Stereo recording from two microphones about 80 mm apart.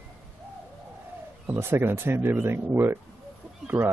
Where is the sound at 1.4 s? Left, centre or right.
Right.